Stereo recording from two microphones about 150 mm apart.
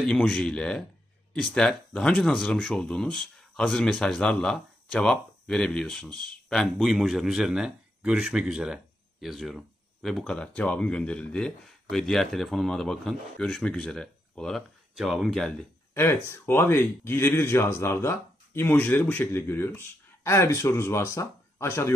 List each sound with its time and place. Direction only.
0.0 s speech: 5° left (ahead or behind)
15.9 s speech: 15° left (ahead or behind)